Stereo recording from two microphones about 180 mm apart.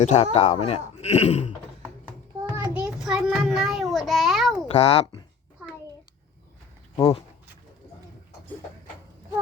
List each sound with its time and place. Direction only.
0.0 s speech: 35° left (ahead or behind)
2.4 s child singing: 10° right (ahead or behind)
4.7 s speech: 35° left (ahead or behind)
6.9 s speech: 25° left (ahead or behind)